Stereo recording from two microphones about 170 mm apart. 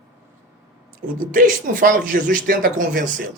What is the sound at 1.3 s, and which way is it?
Speech, 55° right (ahead or behind).